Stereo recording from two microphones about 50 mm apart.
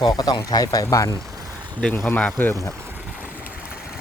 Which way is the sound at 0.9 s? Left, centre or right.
Left.